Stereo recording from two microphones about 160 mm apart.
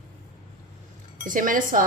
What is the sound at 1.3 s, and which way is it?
Speech, 55° right (ahead or behind).